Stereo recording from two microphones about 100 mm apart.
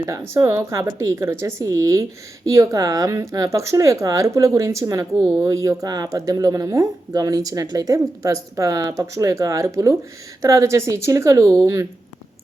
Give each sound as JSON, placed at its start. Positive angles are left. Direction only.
{"t": 0.0, "sound": "speech", "side_deg": -30}